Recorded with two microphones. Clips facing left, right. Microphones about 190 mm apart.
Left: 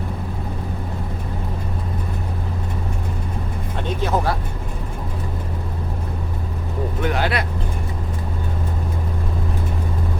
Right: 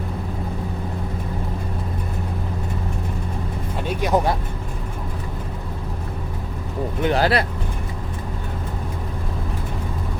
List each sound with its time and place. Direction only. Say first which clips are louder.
3.8 s speech: right 2 dB; 15° right (ahead or behind)
7.0 s speech: right 4 dB; 35° right (ahead or behind)